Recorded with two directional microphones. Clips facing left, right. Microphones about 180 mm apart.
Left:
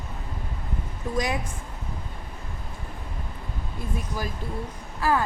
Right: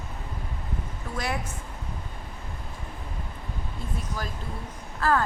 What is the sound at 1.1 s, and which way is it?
Speech, 15° left (ahead or behind).